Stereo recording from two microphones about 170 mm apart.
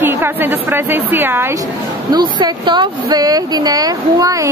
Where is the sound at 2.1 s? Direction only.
25° right (ahead or behind).